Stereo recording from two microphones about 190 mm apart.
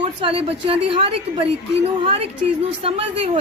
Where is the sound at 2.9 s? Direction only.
30° right (ahead or behind).